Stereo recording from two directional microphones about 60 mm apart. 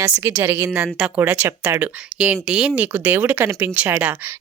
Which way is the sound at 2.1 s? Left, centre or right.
Centre.